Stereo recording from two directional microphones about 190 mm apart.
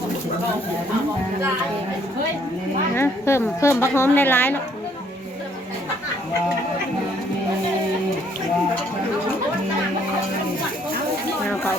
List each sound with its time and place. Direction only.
2.9 s a woman's voice: 15° left (ahead or behind)